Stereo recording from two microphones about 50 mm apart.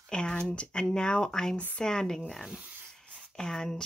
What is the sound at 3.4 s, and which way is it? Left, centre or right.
Speech, centre.